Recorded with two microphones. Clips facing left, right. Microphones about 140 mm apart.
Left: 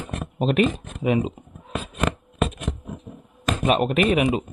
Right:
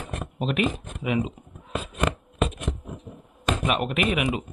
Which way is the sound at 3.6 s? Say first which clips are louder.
Left 7 dB; 35° left (ahead or behind).